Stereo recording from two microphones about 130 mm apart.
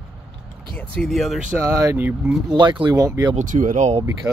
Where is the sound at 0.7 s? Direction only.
5° left (ahead or behind).